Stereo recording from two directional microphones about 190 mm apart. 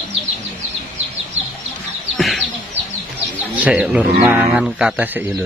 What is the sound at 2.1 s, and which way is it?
Bird, centre (ahead or behind).